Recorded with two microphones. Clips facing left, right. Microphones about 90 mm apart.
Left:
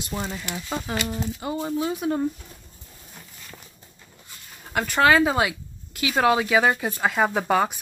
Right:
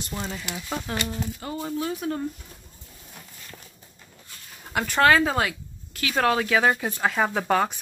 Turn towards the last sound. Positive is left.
turn(degrees=10)  # may be behind; listen again after turning